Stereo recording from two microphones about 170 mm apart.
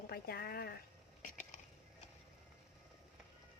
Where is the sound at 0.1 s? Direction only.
65° left (ahead or behind).